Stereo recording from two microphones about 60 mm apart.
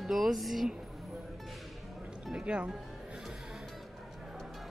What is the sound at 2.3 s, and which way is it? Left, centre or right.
Speech, centre.